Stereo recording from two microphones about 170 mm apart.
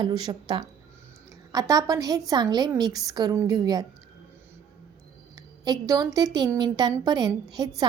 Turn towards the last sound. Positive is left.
turn(degrees=-25)  # may be behind; listen again after turning